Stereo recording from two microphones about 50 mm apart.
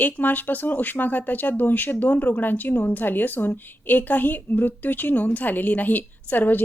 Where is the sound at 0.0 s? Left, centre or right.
Left.